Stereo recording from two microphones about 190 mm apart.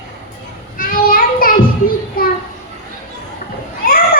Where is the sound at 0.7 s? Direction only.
45° left (ahead or behind).